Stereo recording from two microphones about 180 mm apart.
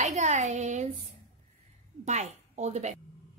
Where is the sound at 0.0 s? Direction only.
40° right (ahead or behind).